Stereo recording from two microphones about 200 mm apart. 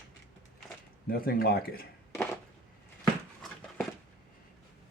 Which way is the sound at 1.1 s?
50° left (ahead or behind).